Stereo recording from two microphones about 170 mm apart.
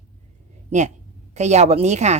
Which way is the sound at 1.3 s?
40° right (ahead or behind).